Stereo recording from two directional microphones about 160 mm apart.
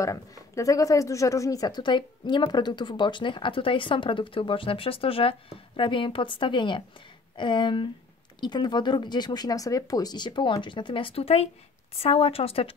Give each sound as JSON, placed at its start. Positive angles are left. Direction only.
{"t": 0.0, "sound": "a woman's voice", "side_deg": 20}